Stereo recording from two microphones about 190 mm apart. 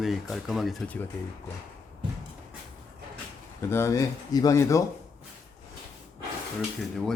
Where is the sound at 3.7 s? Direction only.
15° left (ahead or behind).